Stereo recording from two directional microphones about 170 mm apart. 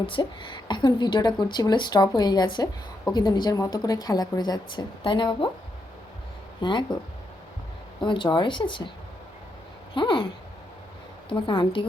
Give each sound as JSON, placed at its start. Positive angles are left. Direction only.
{"t": 0.0, "sound": "a woman's voice", "side_deg": 30}
{"t": 6.6, "sound": "a woman's voice", "side_deg": 30}
{"t": 8.0, "sound": "a woman's voice", "side_deg": 30}
{"t": 9.9, "sound": "a woman's voice", "side_deg": 30}
{"t": 11.3, "sound": "a woman's voice", "side_deg": 30}